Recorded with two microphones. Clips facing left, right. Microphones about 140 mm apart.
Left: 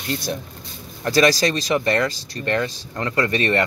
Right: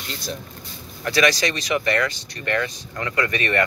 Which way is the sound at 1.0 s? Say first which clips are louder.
Left 3 dB; 35° left (ahead or behind).